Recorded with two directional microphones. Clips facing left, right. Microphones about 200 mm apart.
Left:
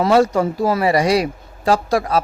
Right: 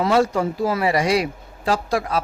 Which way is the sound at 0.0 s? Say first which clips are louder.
Left 4 dB; 40° left (ahead or behind).